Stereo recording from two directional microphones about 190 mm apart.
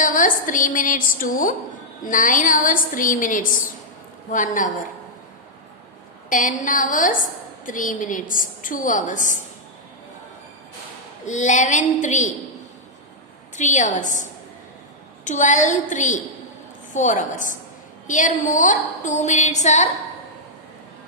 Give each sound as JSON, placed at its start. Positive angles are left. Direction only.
{"t": 0.0, "sound": "a woman's voice", "side_deg": 45}
{"t": 6.3, "sound": "a woman's voice", "side_deg": 45}
{"t": 11.3, "sound": "a woman's voice", "side_deg": 40}
{"t": 13.6, "sound": "a woman's voice", "side_deg": 40}